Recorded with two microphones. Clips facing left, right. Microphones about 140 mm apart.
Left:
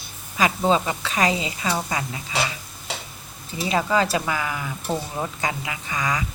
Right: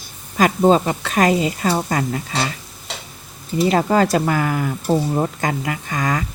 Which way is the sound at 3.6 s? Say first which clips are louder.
Right 5 dB; 50° right (ahead or behind).